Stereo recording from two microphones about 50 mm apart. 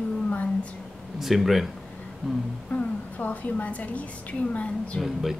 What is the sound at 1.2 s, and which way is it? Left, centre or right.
Speech, centre.